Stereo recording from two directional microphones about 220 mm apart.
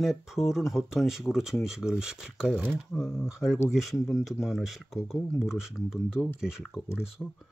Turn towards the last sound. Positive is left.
turn(degrees=-5)  # may be behind; listen again after turning